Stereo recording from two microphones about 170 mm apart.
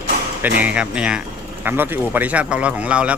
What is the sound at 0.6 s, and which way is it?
A man's voice, 5° right (ahead or behind).